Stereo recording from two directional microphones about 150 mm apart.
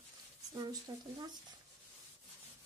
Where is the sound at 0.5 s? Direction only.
25° right (ahead or behind).